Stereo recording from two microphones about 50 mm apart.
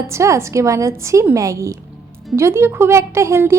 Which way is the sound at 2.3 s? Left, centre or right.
Right.